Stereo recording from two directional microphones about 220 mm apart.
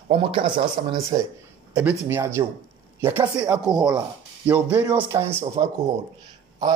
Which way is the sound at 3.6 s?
Centre (ahead or behind).